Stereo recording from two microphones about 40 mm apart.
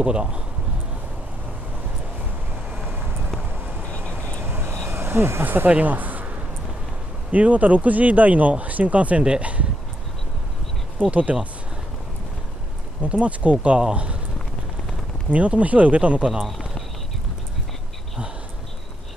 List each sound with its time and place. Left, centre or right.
0.0 s speech: right
3.9 s vehicle: left
4.5 s vehicle: right
4.8 s a sound: right
5.4 s speech: right
5.7 s speech: right
11.1 s speech: right
13.0 s speech: right
15.3 s speech: right
16.4 s run: centre